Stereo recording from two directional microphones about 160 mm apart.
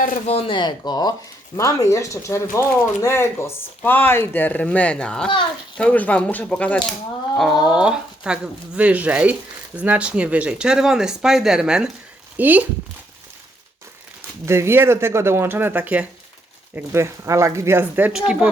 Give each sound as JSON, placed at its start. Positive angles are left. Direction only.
{"t": 0.3, "sound": "speech", "side_deg": 35}
{"t": 14.4, "sound": "speech", "side_deg": -15}